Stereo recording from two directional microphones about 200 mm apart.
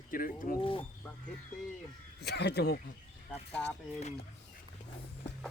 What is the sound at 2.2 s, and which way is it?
Speech, 55° left (ahead or behind).